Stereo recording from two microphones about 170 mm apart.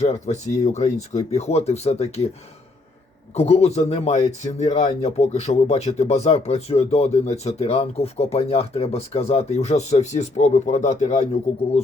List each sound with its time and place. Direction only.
0.0 s speech: 40° left (ahead or behind)
3.3 s speech: 40° left (ahead or behind)